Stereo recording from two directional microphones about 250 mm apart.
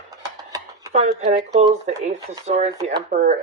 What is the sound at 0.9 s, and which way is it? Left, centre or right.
Speech, right.